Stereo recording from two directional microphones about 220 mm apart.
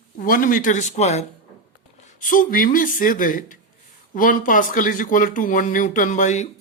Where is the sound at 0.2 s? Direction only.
40° left (ahead or behind).